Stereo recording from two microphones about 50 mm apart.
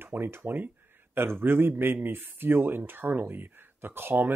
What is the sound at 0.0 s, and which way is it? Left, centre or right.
Speech, right.